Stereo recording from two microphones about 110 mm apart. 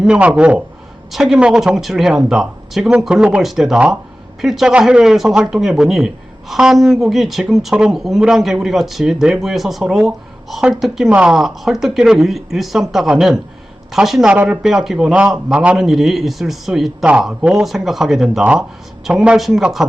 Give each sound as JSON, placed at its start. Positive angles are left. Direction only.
{"t": 0.0, "sound": "a man's voice", "side_deg": -10}